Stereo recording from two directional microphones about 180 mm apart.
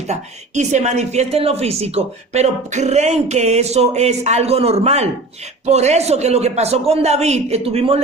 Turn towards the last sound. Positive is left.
turn(degrees=-35)  # may be behind; listen again after turning